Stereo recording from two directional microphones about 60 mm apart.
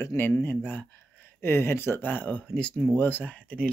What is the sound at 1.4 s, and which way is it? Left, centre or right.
Speech, left.